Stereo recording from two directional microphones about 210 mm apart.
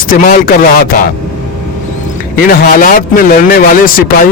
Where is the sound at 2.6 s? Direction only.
40° left (ahead or behind).